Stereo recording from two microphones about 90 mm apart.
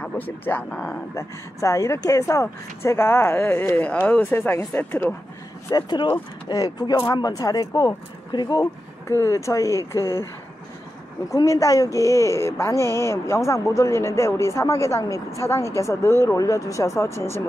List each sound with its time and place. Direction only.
0.0 s speech: 15° left (ahead or behind)
1.1 s speech: 35° left (ahead or behind)
5.8 s speech: 55° left (ahead or behind)
6.5 s speech: 45° left (ahead or behind)
9.0 s speech: 35° left (ahead or behind)
11.3 s speech: 40° left (ahead or behind)